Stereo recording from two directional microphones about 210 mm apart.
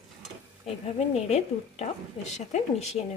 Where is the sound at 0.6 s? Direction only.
30° left (ahead or behind).